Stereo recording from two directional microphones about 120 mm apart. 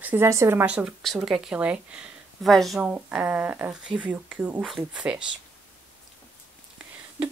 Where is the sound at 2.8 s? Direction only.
10° right (ahead or behind).